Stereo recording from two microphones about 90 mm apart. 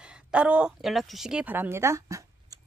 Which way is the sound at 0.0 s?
10° right (ahead or behind).